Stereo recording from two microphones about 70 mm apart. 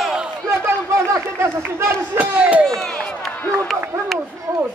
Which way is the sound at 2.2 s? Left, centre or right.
Right.